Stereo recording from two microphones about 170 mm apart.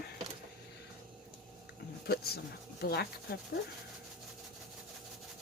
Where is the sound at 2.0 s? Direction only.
65° left (ahead or behind).